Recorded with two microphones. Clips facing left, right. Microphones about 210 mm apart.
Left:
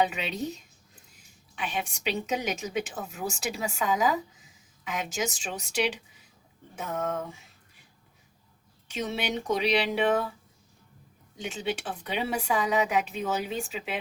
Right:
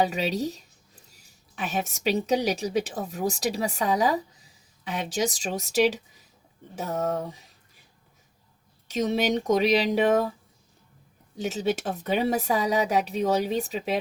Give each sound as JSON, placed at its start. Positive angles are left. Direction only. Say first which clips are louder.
{"t": 0.0, "sound": "a woman's voice", "louder": "right 3 dB", "side_deg": -40}
{"t": 8.9, "sound": "a woman's voice", "louder": "right 7 dB", "side_deg": -40}
{"t": 11.3, "sound": "a woman's voice", "louder": "right 6 dB", "side_deg": -40}